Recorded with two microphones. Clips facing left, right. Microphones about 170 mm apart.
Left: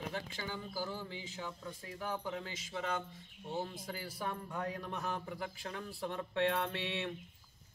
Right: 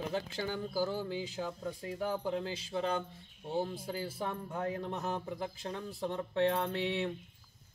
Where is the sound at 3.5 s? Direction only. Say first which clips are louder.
Right 5 dB; 30° right (ahead or behind).